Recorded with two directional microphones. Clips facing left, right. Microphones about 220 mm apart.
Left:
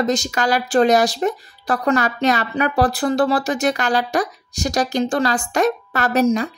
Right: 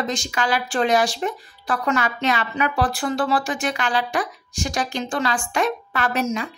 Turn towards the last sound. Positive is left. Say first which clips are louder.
# left 6 dB
turn(degrees=40)  # may be behind; listen again after turning